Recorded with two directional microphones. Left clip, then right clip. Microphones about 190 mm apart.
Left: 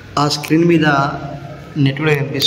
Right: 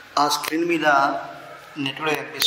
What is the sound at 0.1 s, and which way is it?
A man's voice, 5° left (ahead or behind).